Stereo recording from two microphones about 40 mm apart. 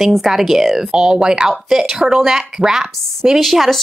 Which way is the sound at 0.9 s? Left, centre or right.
Centre.